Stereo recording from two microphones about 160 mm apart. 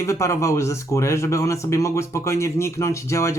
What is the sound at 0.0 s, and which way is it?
Speech, 20° left (ahead or behind).